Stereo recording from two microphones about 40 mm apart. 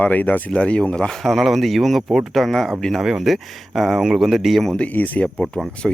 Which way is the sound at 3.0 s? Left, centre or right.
Centre.